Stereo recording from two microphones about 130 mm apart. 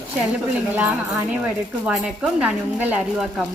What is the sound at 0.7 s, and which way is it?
Speech, 15° right (ahead or behind).